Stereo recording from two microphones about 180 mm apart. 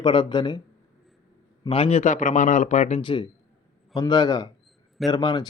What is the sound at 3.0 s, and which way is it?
A man's voice, 25° left (ahead or behind).